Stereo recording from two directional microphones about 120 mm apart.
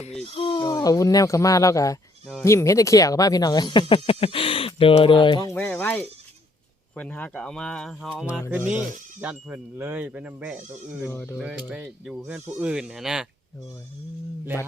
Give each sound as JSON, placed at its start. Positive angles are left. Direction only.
{"t": 0.3, "sound": "a sound", "side_deg": 50}
{"t": 0.7, "sound": "speech", "side_deg": 30}
{"t": 5.5, "sound": "speech", "side_deg": 15}
{"t": 8.4, "sound": "speech", "side_deg": -15}
{"t": 11.0, "sound": "speech", "side_deg": 20}
{"t": 11.3, "sound": "speech", "side_deg": -5}